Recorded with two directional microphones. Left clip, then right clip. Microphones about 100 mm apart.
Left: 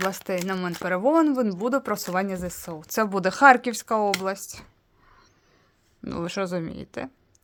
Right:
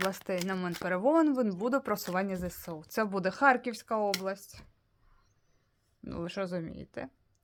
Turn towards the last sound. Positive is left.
turn(degrees=30)  # may be behind; listen again after turning